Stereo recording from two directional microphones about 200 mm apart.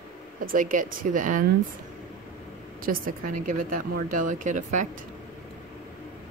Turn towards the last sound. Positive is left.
turn(degrees=-40)  # may be behind; listen again after turning